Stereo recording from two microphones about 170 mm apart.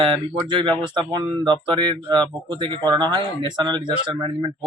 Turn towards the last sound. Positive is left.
turn(degrees=-25)  # may be behind; listen again after turning